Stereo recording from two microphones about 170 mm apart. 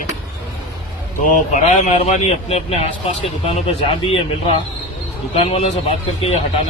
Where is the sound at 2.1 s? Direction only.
35° left (ahead or behind).